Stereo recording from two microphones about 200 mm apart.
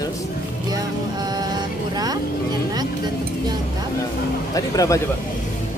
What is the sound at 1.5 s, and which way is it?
Vehicle, 20° right (ahead or behind).